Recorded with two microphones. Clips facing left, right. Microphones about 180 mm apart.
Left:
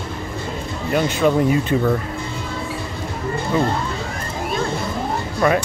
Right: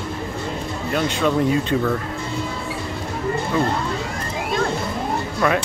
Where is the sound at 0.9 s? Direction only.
5° left (ahead or behind).